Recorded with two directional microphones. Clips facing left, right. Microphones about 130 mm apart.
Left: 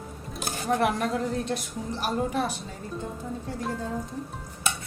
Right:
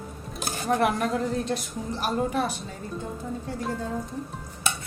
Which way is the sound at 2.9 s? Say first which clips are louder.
Even; centre (ahead or behind).